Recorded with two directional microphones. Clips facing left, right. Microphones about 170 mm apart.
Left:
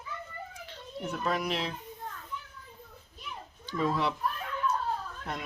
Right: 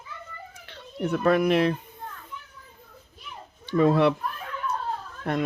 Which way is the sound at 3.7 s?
65° right (ahead or behind).